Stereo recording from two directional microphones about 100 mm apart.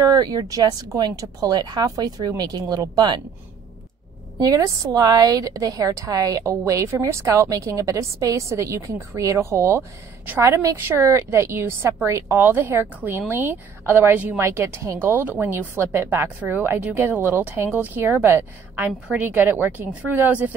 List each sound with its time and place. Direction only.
0.0 s a woman's voice: 40° right (ahead or behind)
4.4 s a woman's voice: 35° right (ahead or behind); by 14.4 s 15° right (ahead or behind)
14.4 s a woman's voice: 25° right (ahead or behind)